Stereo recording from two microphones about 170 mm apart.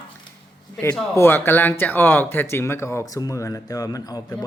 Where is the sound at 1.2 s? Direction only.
15° left (ahead or behind).